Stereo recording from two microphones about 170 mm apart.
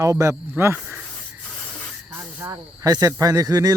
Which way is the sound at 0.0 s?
20° right (ahead or behind).